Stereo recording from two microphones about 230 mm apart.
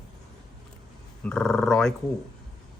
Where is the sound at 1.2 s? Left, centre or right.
Centre.